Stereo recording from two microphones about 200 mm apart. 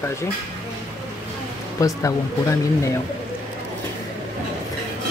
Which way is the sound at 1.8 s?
15° left (ahead or behind).